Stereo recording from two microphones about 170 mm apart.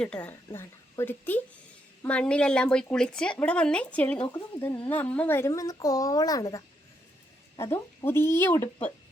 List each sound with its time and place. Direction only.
0.0 s speech: 5° left (ahead or behind)
7.6 s speech: 15° left (ahead or behind)